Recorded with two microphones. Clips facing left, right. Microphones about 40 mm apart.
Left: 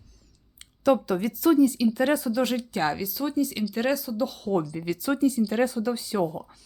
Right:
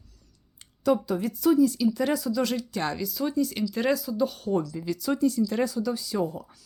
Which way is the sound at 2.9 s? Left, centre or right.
Centre.